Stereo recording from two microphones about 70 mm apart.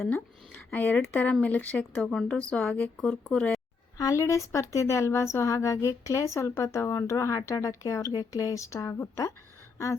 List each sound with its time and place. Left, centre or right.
0.0 s speech: left
2.0 s speech: centre
3.9 s a woman's voice: left
4.2 s a woman's voice: left